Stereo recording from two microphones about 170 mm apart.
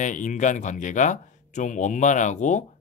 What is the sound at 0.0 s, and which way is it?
Speech, 45° left (ahead or behind).